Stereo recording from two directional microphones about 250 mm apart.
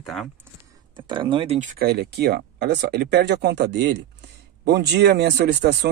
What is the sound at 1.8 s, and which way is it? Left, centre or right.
Speech, right.